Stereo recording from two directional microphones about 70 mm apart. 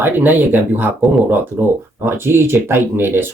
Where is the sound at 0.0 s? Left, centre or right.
Right.